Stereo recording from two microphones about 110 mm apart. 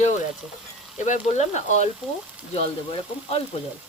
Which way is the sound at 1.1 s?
90° left.